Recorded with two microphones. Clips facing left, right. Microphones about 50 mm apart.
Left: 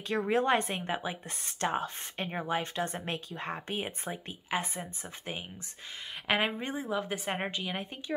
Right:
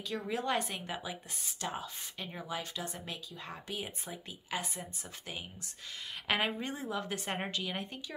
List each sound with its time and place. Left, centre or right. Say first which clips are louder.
0.1 s a woman's voice: left 7 dB; left
1.4 s a woman's voice: left 9 dB; left
6.2 s a woman's voice: left 3 dB; centre